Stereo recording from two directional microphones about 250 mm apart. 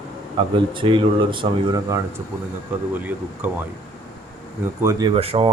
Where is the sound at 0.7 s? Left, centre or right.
Centre.